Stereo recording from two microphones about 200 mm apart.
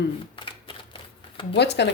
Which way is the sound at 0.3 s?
25° left (ahead or behind).